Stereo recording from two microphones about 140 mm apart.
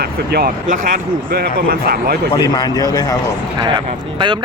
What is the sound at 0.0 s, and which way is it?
Speech, 90° right.